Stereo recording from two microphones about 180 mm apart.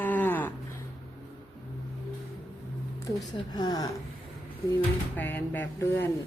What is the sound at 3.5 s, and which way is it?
Speech, 20° left (ahead or behind).